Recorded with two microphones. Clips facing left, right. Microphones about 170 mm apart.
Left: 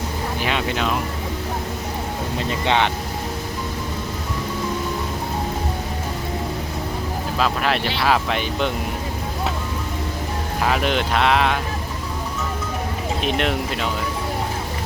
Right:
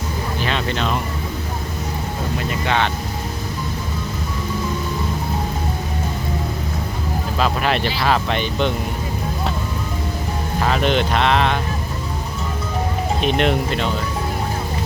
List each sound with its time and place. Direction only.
0.4 s speech: 10° left (ahead or behind)
2.5 s speech: 20° left (ahead or behind)
7.3 s speech: centre (ahead or behind)
10.6 s speech: 5° left (ahead or behind)
13.2 s speech: centre (ahead or behind)